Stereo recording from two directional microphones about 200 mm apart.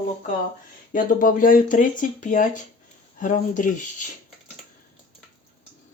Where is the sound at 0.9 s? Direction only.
45° left (ahead or behind).